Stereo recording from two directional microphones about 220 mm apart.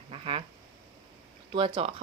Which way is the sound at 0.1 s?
25° right (ahead or behind).